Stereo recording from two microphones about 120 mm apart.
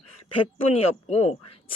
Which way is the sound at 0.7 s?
60° left (ahead or behind).